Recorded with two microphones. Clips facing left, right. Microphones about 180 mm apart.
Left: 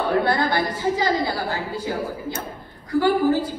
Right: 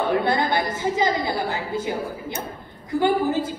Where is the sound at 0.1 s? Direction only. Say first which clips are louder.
Left 3 dB; 20° right (ahead or behind).